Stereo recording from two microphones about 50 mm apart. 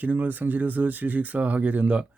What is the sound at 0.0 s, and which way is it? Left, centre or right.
Speech, right.